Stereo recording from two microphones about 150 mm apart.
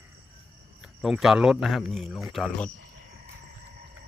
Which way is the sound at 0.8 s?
Centre (ahead or behind).